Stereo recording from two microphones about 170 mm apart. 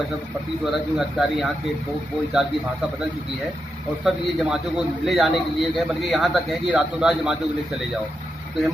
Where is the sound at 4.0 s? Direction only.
Centre (ahead or behind).